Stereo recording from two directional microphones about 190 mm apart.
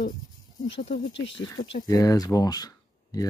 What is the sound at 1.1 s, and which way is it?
Speech, 70° left (ahead or behind).